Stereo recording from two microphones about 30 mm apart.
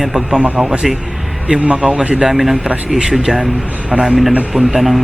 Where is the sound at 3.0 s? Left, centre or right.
Centre.